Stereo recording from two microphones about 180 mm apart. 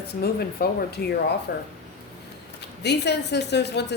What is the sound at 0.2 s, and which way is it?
Speech, 60° left (ahead or behind).